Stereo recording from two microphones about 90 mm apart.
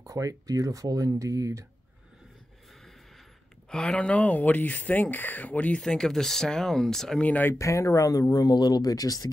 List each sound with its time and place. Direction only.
0.0 s speech: 40° right (ahead or behind)
3.7 s speech: 10° left (ahead or behind)
5.8 s speech: 5° left (ahead or behind)
7.2 s speech: 20° left (ahead or behind)
7.5 s speech: 35° left (ahead or behind)